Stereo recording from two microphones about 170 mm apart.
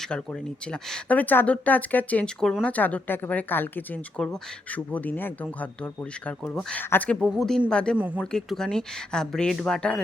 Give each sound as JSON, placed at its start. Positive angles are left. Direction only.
{"t": 0.0, "sound": "speech", "side_deg": 5}
{"t": 7.9, "sound": "speech", "side_deg": -10}
{"t": 8.2, "sound": "speech", "side_deg": 5}